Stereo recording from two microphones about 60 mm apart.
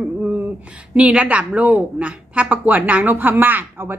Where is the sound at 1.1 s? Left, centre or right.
Centre.